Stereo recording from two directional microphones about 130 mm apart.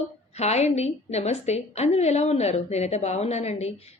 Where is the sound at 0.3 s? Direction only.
55° left (ahead or behind).